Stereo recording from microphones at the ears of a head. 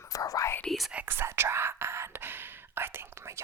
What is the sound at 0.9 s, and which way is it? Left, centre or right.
Whispering, right.